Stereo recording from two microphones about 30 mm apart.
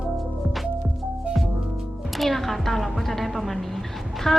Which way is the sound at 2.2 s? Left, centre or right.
Centre.